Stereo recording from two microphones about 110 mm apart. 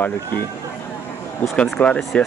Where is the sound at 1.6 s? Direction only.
10° left (ahead or behind).